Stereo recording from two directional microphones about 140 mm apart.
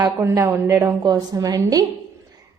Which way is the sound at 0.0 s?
20° right (ahead or behind).